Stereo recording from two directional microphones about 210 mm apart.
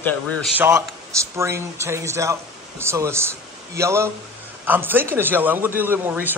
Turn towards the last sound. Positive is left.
turn(degrees=-10)  # may be behind; listen again after turning